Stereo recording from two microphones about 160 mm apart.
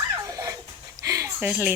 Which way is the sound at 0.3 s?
20° right (ahead or behind).